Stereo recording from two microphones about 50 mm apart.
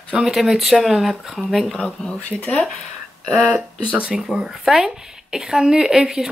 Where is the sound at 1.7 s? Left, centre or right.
Centre.